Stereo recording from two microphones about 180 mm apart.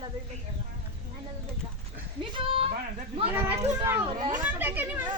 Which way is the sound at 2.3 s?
30° right (ahead or behind).